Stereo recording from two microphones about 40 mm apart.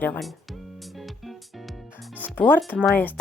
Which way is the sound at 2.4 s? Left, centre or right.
Left.